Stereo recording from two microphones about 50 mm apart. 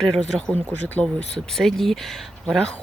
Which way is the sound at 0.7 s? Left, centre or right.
Left.